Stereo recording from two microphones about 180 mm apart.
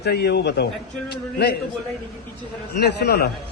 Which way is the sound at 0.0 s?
65° left (ahead or behind).